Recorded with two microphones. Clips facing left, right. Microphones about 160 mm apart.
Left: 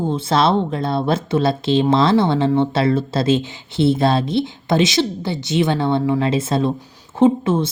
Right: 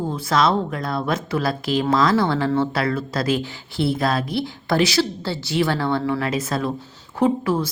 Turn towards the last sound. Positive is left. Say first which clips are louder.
# left 4 dB
turn(degrees=25)  # may be behind; listen again after turning